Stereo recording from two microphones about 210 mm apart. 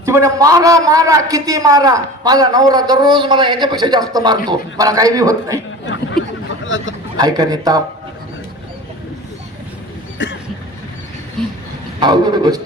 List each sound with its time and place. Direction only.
0.0 s a man's voice: 15° right (ahead or behind)
5.8 s a sound: 55° left (ahead or behind)
6.7 s speech: 65° left (ahead or behind)
7.2 s speech: 20° right (ahead or behind)
10.2 s a sound: 60° left (ahead or behind)
11.9 s speech: 20° right (ahead or behind)